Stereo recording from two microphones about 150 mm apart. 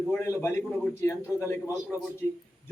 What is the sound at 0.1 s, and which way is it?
A man's voice, 20° left (ahead or behind).